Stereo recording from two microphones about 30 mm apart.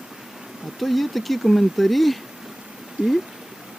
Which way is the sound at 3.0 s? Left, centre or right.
Right.